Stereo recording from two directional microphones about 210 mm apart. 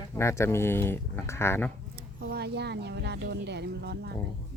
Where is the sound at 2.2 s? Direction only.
50° right (ahead or behind).